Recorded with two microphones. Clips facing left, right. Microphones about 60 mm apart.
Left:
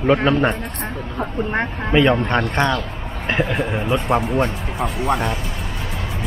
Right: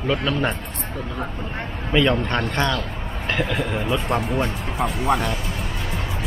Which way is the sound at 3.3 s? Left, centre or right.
Left.